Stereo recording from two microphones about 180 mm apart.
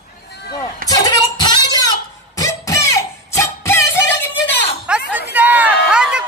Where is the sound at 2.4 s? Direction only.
15° left (ahead or behind).